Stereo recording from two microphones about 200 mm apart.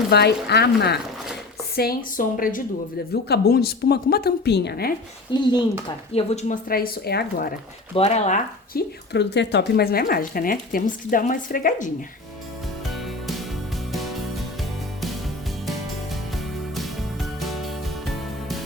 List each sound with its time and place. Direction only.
0.1 s speech: 55° left (ahead or behind)
5.3 s speech: 20° left (ahead or behind)
6.1 s speech: 35° left (ahead or behind)
7.9 s speech: 30° left (ahead or behind)
8.7 s speech: 60° left (ahead or behind); by 11.9 s 40° left (ahead or behind)
12.8 s music: centre (ahead or behind)
16.3 s music: centre (ahead or behind)